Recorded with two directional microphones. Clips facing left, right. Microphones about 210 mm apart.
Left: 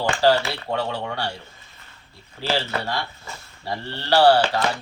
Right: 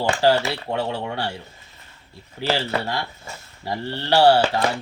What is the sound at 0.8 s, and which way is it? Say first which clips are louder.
Speech: right 1 dB; 25° right (ahead or behind).